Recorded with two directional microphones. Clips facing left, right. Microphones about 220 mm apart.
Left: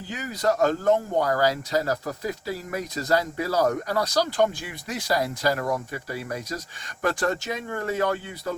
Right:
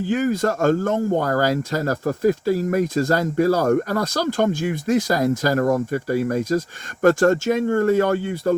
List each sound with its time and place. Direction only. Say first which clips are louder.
0.1 s speech: right 5 dB; 50° right (ahead or behind)